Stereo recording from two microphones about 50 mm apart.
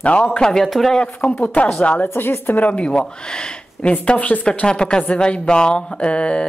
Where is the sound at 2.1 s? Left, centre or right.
Left.